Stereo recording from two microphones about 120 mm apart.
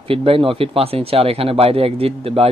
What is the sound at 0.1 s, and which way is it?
Speech, 50° right (ahead or behind).